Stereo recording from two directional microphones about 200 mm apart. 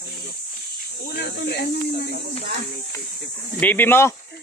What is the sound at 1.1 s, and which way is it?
Speech, 55° left (ahead or behind).